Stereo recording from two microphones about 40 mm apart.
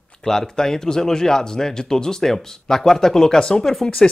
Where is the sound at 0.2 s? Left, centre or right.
Centre.